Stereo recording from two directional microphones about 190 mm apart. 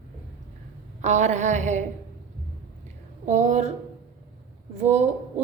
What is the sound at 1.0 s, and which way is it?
Speech, 35° right (ahead or behind).